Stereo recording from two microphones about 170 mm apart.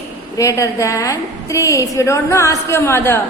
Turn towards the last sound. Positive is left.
turn(degrees=15)  # may be behind; listen again after turning